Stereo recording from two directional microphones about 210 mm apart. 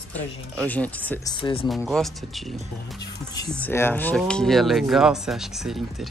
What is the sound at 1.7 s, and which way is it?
Speech, centre (ahead or behind).